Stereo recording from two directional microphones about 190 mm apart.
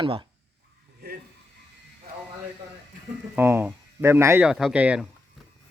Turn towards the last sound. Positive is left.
turn(degrees=-5)  # may be behind; listen again after turning